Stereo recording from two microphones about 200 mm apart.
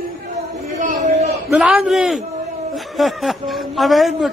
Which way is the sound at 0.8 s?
35° right (ahead or behind).